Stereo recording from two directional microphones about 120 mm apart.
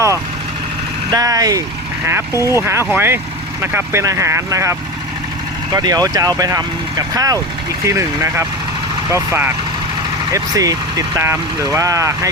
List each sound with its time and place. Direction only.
1.1 s speech: 30° right (ahead or behind)
10.3 s speech: 30° right (ahead or behind)